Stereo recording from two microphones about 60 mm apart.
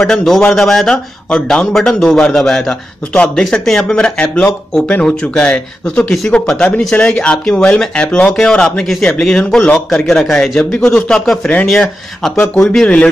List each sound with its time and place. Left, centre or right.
0.0 s speech: centre
12.4 s speech: left